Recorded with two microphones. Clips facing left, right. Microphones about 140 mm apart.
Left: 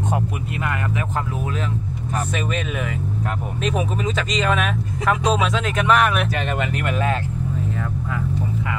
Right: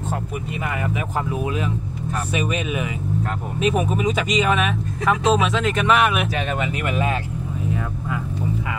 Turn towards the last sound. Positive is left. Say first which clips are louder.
# even
turn(degrees=-10)  # may be behind; listen again after turning